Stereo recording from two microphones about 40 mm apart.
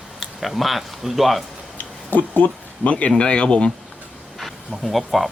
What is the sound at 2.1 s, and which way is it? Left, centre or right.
Speech, left.